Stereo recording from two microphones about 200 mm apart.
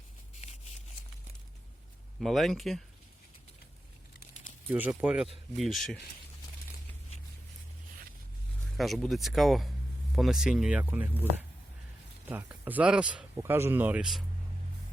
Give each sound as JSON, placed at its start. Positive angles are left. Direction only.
{"t": 0.3, "sound": "a sound", "side_deg": 30}
{"t": 2.2, "sound": "speech", "side_deg": 0}
{"t": 4.7, "sound": "speech", "side_deg": -10}
{"t": 8.8, "sound": "speech", "side_deg": 0}
{"t": 12.3, "sound": "speech", "side_deg": -10}